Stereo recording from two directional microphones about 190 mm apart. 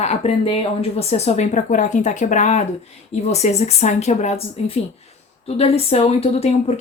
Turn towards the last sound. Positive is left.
turn(degrees=30)  # may be behind; listen again after turning